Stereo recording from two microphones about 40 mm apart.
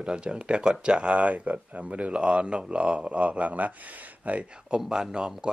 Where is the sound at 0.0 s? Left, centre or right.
Right.